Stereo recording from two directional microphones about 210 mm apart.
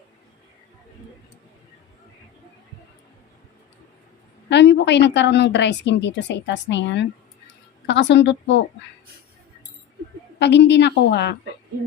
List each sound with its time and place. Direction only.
4.4 s a woman's voice: 55° left (ahead or behind)
10.4 s a woman's voice: 55° left (ahead or behind)